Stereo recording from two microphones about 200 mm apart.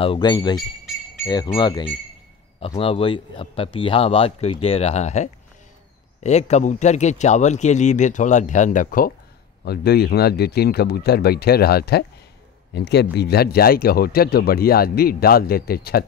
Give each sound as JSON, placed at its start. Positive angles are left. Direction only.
{"t": 0.0, "sound": "a man's voice", "side_deg": 25}
{"t": 9.7, "sound": "speech", "side_deg": 55}